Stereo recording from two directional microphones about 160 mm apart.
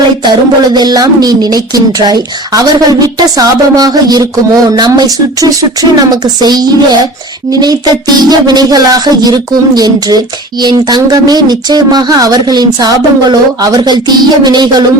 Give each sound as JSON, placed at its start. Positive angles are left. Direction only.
{"t": 0.3, "sound": "speech", "side_deg": -25}